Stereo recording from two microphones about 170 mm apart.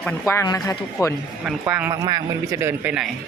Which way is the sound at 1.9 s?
20° right (ahead or behind).